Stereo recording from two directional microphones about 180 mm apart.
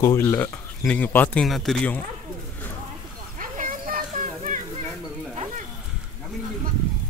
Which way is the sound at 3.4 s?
50° right (ahead or behind).